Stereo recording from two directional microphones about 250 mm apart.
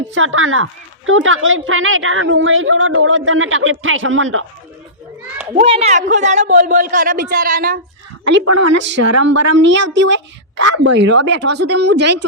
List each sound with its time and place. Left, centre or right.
0.1 s a woman's voice: right
5.5 s a man's voice: right
8.5 s speech: right
8.8 s a woman's voice: right